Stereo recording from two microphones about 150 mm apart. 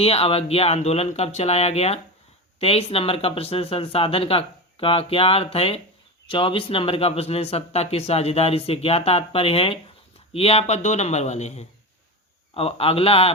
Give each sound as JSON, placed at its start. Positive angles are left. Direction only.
{"t": 0.0, "sound": "speech", "side_deg": 40}